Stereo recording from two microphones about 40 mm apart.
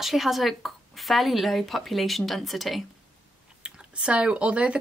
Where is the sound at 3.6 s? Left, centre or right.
Right.